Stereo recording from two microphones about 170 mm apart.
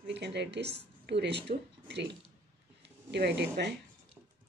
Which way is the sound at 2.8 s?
80° right.